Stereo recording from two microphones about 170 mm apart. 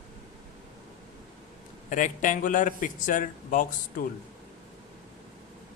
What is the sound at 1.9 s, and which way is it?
A man's voice, 50° left (ahead or behind).